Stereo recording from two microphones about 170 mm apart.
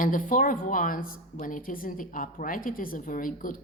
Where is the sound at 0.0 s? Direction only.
50° left (ahead or behind).